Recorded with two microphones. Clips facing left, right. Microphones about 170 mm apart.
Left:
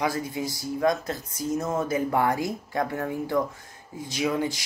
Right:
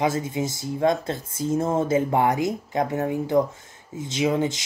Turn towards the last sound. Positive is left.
turn(degrees=-20)  # may be behind; listen again after turning